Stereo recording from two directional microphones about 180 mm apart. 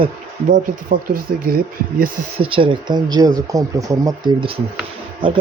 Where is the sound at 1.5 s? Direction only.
60° right (ahead or behind).